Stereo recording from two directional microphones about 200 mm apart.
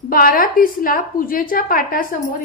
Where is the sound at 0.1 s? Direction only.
45° left (ahead or behind).